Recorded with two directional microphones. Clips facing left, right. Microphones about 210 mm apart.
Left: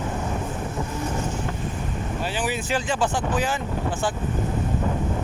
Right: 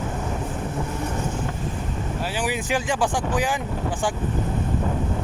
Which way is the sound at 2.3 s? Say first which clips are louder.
Right 2 dB; 15° right (ahead or behind).